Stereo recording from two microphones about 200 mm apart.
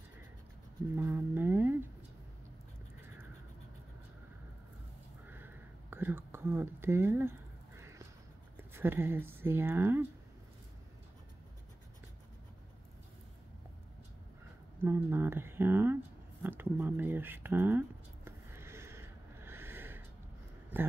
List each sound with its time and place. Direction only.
0.9 s a sound: 10° right (ahead or behind)
5.2 s whispering: 10° right (ahead or behind)
8.5 s speech: 10° right (ahead or behind)
14.8 s speech: 10° right (ahead or behind)
16.4 s a sound: 10° right (ahead or behind)
20.7 s speech: 10° right (ahead or behind)